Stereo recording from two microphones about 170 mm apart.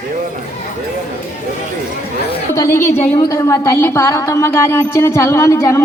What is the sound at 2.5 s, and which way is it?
Speech, 15° left (ahead or behind).